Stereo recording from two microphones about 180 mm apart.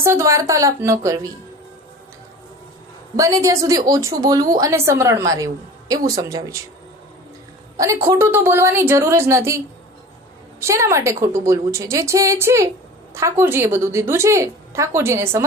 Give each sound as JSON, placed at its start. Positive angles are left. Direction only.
{"t": 0.0, "sound": "a woman's voice", "side_deg": -15}
{"t": 3.2, "sound": "a woman's voice", "side_deg": -20}
{"t": 8.0, "sound": "a woman's voice", "side_deg": -15}
{"t": 10.6, "sound": "a woman's voice", "side_deg": -15}